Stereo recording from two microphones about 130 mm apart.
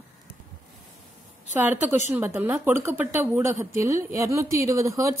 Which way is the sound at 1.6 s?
15° right (ahead or behind).